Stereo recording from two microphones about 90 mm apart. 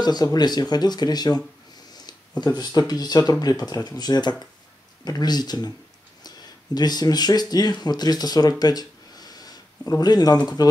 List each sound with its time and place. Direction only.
0.0 s speech: 50° left (ahead or behind)
2.4 s speech: 50° left (ahead or behind)